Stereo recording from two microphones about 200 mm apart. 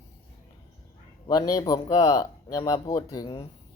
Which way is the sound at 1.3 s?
20° left (ahead or behind).